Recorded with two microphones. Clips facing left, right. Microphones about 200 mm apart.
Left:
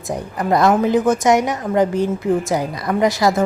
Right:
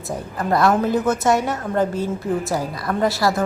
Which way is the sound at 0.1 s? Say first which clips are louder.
Left 3 dB; 15° left (ahead or behind).